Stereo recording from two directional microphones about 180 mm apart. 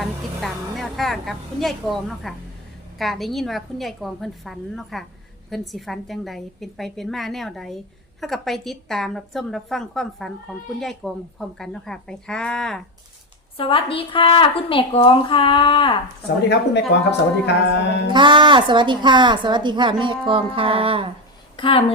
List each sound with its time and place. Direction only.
0.0 s music: centre (ahead or behind)
3.0 s a woman's voice: centre (ahead or behind)
13.6 s a woman's voice: 30° left (ahead or behind)
16.4 s speech: 70° left (ahead or behind)
18.1 s a woman's voice: 25° right (ahead or behind)
21.5 s a woman's voice: 30° left (ahead or behind)